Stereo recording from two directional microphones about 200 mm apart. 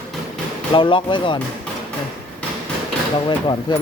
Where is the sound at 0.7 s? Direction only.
25° left (ahead or behind).